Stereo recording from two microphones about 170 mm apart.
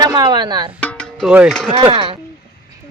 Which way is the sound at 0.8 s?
5° left (ahead or behind).